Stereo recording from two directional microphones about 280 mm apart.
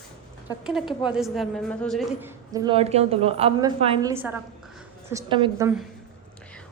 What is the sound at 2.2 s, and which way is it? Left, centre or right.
A woman's voice, centre.